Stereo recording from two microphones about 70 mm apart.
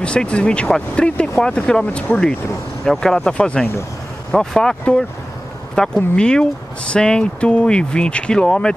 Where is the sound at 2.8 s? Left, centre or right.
Centre.